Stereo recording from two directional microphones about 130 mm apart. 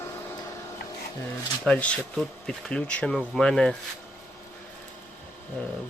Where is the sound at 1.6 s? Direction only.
10° left (ahead or behind).